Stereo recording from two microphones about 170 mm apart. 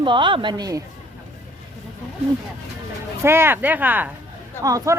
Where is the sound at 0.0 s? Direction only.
30° right (ahead or behind).